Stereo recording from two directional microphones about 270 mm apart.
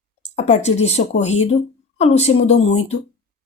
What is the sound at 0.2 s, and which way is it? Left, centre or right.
A woman's voice, left.